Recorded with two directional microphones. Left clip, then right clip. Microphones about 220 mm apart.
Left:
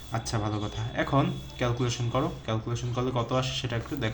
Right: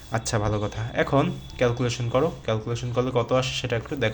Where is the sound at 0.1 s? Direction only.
35° right (ahead or behind).